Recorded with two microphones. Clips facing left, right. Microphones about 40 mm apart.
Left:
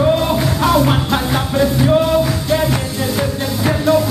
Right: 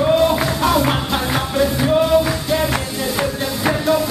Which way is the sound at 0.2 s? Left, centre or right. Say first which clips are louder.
Even; centre.